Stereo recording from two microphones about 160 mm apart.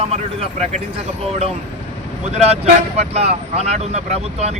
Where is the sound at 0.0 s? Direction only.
40° right (ahead or behind).